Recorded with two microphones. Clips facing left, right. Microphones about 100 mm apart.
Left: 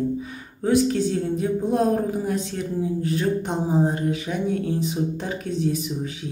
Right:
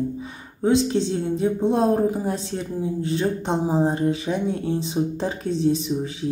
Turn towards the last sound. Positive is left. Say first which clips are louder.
# right 3 dB
turn(degrees=-30)  # may be behind; listen again after turning